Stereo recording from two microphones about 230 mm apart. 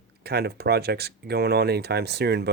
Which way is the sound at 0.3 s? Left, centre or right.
Right.